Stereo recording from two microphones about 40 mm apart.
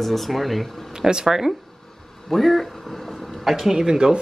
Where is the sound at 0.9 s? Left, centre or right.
Centre.